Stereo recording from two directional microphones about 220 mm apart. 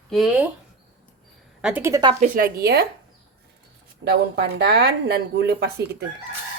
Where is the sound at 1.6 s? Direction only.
10° right (ahead or behind).